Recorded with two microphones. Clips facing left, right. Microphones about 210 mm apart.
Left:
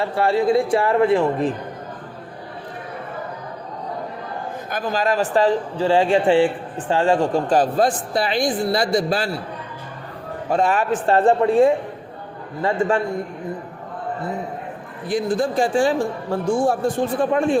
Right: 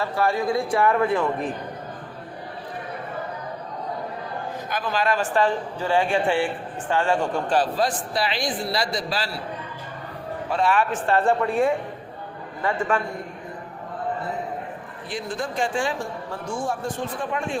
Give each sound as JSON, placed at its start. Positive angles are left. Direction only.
{"t": 0.0, "sound": "speech", "side_deg": 30}
{"t": 4.7, "sound": "a man's voice", "side_deg": 40}
{"t": 10.5, "sound": "a man's voice", "side_deg": 45}
{"t": 15.1, "sound": "a man's voice", "side_deg": 35}